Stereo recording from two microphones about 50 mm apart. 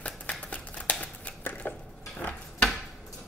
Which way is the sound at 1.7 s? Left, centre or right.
Left.